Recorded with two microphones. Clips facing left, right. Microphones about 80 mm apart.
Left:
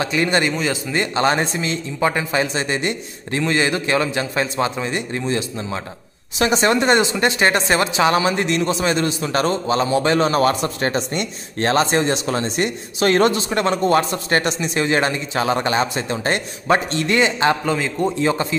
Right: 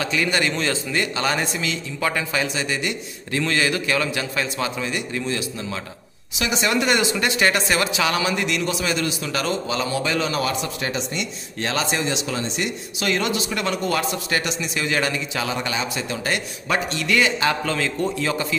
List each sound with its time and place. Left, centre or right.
0.0 s speech: left
0.5 s a man's voice: centre
0.9 s a man's voice: left